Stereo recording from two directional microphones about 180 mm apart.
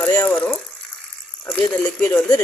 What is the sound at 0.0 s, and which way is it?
Speech, 10° left (ahead or behind).